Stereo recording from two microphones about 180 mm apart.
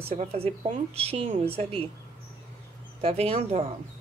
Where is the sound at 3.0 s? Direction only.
35° right (ahead or behind).